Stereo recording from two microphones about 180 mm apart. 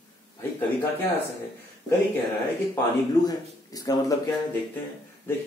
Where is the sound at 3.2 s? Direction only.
20° left (ahead or behind).